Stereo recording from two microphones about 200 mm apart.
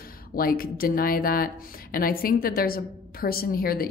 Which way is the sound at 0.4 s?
45° left (ahead or behind).